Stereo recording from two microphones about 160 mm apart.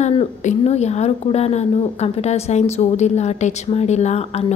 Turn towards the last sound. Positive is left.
turn(degrees=40)  # may be behind; listen again after turning